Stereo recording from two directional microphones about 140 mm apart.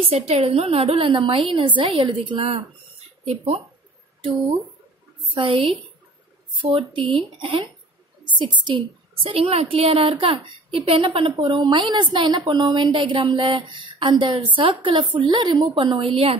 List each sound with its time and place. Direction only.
0.3 s a woman's voice: 45° right (ahead or behind)
15.7 s a woman's voice: 40° right (ahead or behind)